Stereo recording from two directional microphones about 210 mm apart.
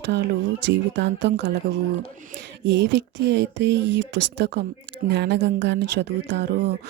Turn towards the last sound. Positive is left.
turn(degrees=-50)  # may be behind; listen again after turning